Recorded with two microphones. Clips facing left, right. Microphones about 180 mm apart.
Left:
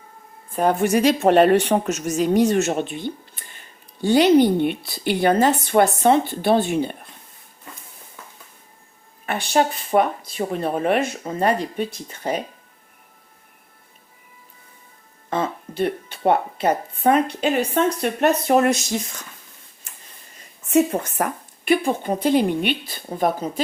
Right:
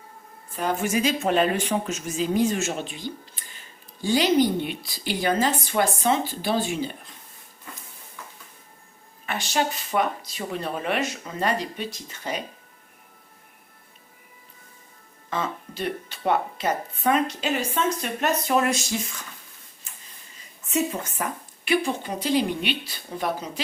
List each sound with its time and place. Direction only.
0.5 s speech: 55° left (ahead or behind)
1.7 s speech: 40° left (ahead or behind)
2.1 s speech: 70° left (ahead or behind)
9.2 s speech: 55° left (ahead or behind)
15.7 s speech: 55° left (ahead or behind)
20.7 s speech: 55° left (ahead or behind)